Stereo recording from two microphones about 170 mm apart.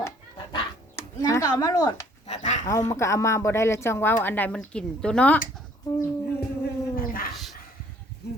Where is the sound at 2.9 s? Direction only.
15° left (ahead or behind).